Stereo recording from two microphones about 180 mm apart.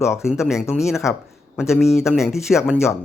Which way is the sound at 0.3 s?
Centre (ahead or behind).